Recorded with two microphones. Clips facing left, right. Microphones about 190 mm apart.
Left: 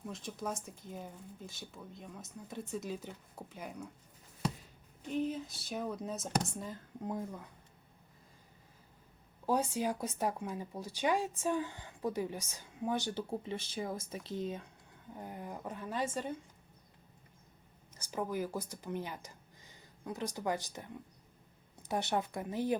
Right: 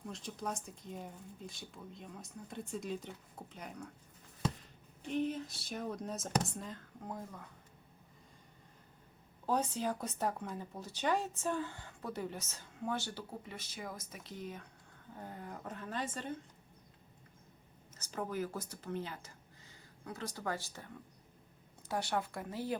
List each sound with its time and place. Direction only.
0.0 s speech: centre (ahead or behind)
5.0 s speech: centre (ahead or behind)
9.5 s speech: 10° left (ahead or behind)
15.1 s speech: 15° left (ahead or behind)
17.9 s speech: 15° left (ahead or behind)